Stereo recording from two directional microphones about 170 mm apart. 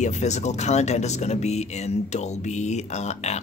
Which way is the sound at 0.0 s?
45° left (ahead or behind).